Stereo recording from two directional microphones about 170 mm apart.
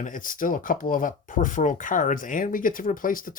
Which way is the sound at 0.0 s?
50° left (ahead or behind).